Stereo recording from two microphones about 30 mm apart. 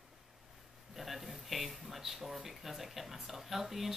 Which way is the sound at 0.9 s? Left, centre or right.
Centre.